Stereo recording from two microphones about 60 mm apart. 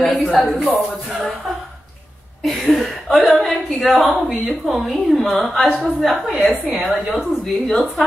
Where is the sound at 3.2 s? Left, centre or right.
Centre.